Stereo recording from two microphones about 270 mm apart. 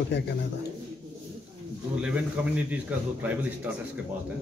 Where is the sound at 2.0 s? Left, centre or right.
Centre.